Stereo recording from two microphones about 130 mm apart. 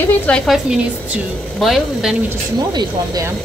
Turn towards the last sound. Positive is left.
turn(degrees=-35)  # may be behind; listen again after turning